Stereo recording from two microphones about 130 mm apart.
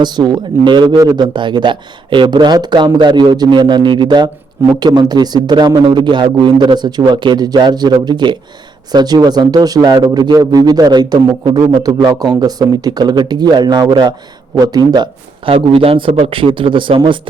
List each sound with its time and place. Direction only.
0.0 s a man's voice: 35° right (ahead or behind)
15.5 s a man's voice: 45° right (ahead or behind)